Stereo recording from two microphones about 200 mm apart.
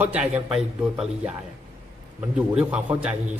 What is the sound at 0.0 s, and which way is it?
A man's voice, 10° right (ahead or behind).